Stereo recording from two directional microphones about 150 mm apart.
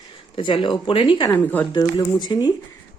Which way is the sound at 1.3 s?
10° left (ahead or behind).